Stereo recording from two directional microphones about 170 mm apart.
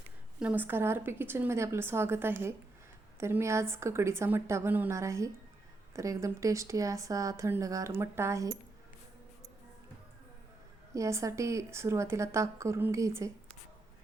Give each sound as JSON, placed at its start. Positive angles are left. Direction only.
{"t": 0.3, "sound": "a woman's voice", "side_deg": -10}
{"t": 10.9, "sound": "a woman's voice", "side_deg": -20}